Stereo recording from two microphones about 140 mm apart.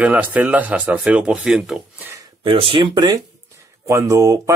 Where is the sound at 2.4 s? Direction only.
40° right (ahead or behind).